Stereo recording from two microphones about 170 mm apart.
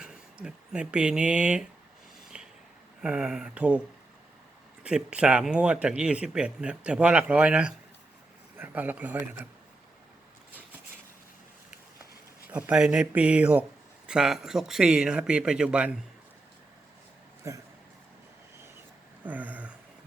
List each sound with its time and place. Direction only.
0.0 s speech: 5° right (ahead or behind)
2.3 s a sound: 5° right (ahead or behind)
3.0 s speech: 5° right (ahead or behind)
4.8 s speech: 5° right (ahead or behind)
12.5 s speech: 10° right (ahead or behind)
17.5 s speech: 15° right (ahead or behind)
19.2 s a sound: 10° right (ahead or behind)